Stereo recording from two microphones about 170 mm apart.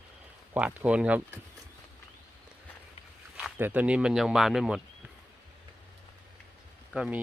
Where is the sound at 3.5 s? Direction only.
10° right (ahead or behind).